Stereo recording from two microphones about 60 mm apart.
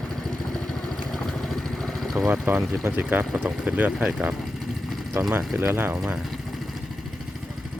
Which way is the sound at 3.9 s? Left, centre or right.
Centre.